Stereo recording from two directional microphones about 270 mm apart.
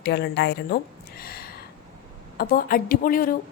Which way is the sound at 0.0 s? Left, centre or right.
Left.